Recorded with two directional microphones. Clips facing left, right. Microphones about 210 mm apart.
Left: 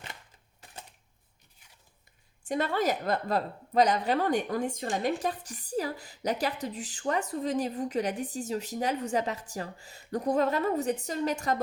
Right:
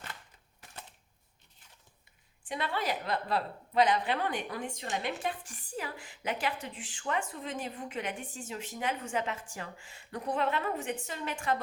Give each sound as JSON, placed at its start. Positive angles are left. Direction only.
{"t": 2.5, "sound": "a woman's voice", "side_deg": 45}